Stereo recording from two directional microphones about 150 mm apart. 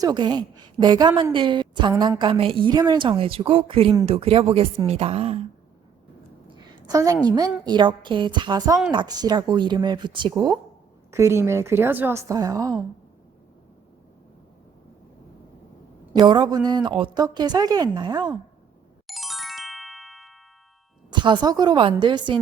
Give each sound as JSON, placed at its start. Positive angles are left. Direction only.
{"t": 0.0, "sound": "a woman's voice", "side_deg": -30}
{"t": 6.8, "sound": "a woman's voice", "side_deg": -25}
{"t": 16.1, "sound": "a woman's voice", "side_deg": -30}
{"t": 19.0, "sound": "music", "side_deg": 0}
{"t": 21.1, "sound": "a woman's voice", "side_deg": -30}